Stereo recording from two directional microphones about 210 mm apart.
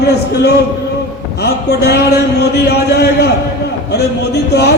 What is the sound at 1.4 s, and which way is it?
A man's voice, 50° left (ahead or behind).